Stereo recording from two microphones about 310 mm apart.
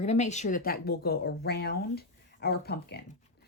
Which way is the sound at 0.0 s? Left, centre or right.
Left.